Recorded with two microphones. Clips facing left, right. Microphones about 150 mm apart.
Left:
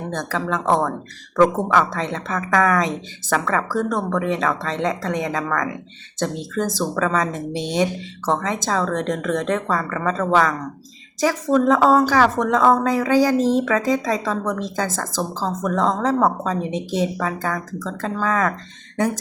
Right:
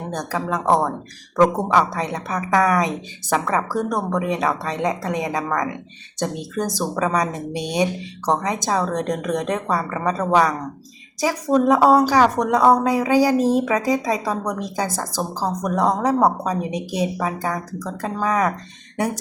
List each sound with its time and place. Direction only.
0.1 s speech: 15° right (ahead or behind)